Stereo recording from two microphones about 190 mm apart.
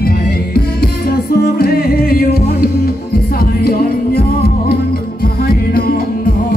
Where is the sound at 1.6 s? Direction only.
50° left (ahead or behind).